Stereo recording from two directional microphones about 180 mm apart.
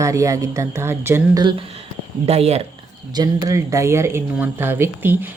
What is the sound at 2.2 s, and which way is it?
Speech, 35° right (ahead or behind).